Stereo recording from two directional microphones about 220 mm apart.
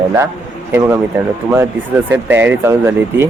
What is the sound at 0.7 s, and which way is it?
Speech, 10° right (ahead or behind).